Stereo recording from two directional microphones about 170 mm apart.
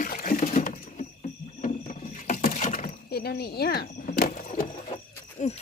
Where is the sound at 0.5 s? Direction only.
50° left (ahead or behind).